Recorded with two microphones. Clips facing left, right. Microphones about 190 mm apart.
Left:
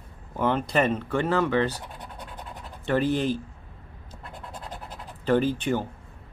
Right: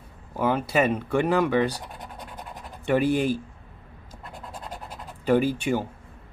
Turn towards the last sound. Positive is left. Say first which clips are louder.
# right 1 dB
turn(degrees=-10)  # may be behind; listen again after turning